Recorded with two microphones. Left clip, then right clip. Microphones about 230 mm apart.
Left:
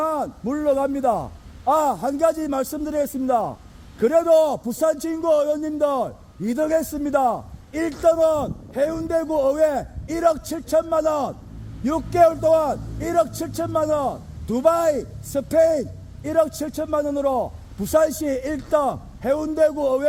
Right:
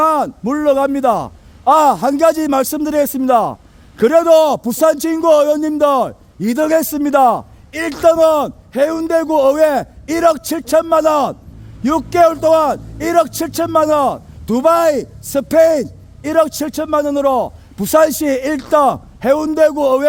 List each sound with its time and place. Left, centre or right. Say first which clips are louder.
0.0 s a man's voice: right 10 dB; right